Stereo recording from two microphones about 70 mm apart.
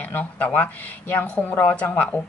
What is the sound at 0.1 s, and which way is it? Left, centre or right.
A woman's voice, left.